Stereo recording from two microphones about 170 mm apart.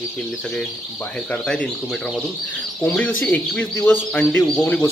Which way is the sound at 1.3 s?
5° left (ahead or behind).